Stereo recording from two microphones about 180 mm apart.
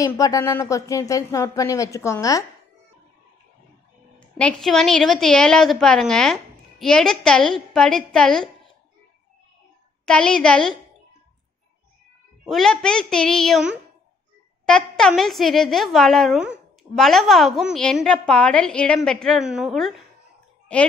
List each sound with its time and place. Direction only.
0.0 s a woman's voice: 20° left (ahead or behind)
4.2 s a woman's voice: 5° left (ahead or behind)
10.0 s a woman's voice: 5° left (ahead or behind)
12.4 s a woman's voice: centre (ahead or behind)